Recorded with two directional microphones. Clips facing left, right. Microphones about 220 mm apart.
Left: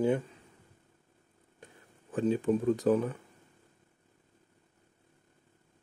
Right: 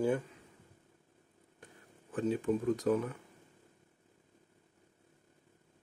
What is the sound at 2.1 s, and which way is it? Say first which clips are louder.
Speech: left 4 dB; 30° left (ahead or behind).